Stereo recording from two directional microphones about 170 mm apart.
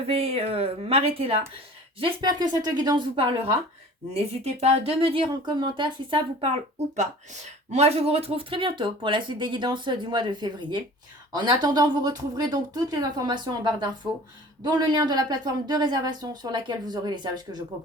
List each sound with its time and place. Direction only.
0.1 s speech: 35° right (ahead or behind)
7.7 s speech: 40° right (ahead or behind); by 17.6 s 25° right (ahead or behind)